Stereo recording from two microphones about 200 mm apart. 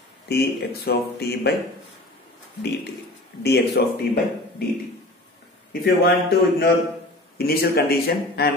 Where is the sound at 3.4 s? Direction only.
55° left (ahead or behind).